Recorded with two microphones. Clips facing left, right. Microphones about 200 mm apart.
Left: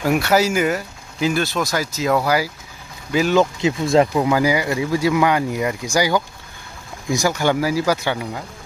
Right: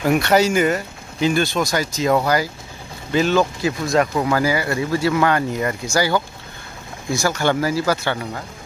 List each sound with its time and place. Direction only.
0.0 s speech: 5° left (ahead or behind)
3.3 s speech: 25° left (ahead or behind)
4.1 s speech: 15° left (ahead or behind)